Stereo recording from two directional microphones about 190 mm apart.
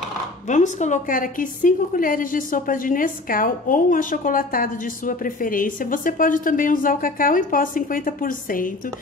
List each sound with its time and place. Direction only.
0.5 s a woman's voice: 40° left (ahead or behind)